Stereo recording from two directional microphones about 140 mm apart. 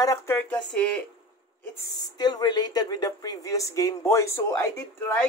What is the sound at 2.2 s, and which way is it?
Speech, 30° left (ahead or behind).